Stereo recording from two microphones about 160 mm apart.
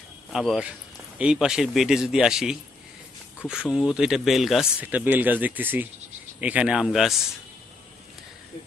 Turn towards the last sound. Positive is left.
turn(degrees=0)  # may be behind; listen again after turning